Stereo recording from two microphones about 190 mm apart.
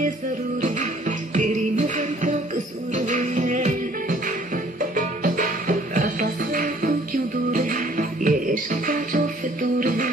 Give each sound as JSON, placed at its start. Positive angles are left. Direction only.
{"t": 0.6, "sound": "music", "side_deg": -40}